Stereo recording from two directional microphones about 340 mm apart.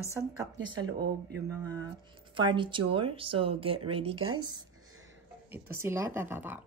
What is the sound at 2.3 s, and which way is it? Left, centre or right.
Speech, centre.